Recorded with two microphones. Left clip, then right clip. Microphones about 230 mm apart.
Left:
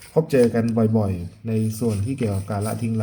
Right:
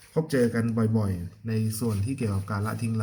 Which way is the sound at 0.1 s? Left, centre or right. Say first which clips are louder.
Left 7 dB; right.